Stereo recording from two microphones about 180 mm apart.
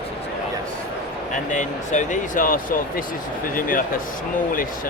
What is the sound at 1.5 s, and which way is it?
Speech, 45° left (ahead or behind).